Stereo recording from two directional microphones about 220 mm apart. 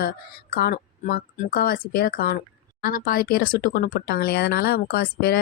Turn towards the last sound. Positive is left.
turn(degrees=45)  # may be behind; listen again after turning